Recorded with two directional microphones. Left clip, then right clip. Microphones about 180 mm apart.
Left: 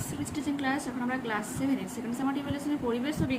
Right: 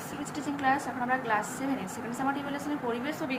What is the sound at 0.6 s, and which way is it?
A woman's voice, 30° left (ahead or behind).